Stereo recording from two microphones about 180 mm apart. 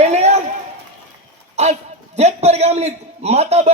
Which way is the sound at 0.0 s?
40° right (ahead or behind).